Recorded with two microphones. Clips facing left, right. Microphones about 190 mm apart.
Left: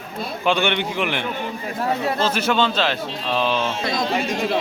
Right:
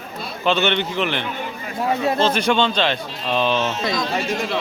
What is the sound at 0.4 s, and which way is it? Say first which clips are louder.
Speech: right 1 dB; 10° left (ahead or behind).